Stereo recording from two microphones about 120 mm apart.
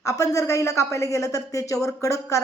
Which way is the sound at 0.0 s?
30° left (ahead or behind).